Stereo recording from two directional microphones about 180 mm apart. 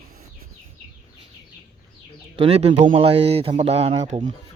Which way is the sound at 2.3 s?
30° right (ahead or behind).